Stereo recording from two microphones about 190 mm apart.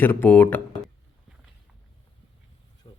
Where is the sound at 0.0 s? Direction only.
10° left (ahead or behind).